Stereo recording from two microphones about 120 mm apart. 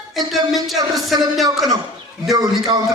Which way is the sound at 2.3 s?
30° right (ahead or behind).